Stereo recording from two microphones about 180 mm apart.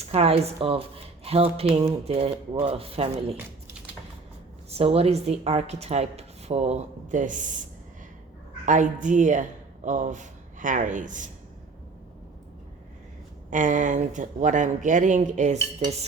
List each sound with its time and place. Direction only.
0.0 s speech: 35° right (ahead or behind)
4.7 s speech: 35° right (ahead or behind)
8.6 s speech: 45° right (ahead or behind)
13.5 s speech: 45° right (ahead or behind)